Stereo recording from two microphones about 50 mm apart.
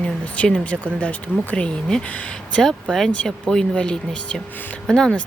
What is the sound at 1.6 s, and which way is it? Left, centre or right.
Speech, centre.